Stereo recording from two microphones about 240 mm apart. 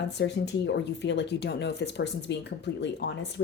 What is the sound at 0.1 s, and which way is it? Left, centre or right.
Speech, left.